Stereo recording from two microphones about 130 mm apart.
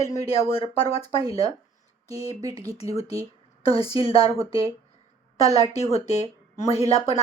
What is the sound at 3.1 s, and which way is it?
Speech, 30° right (ahead or behind).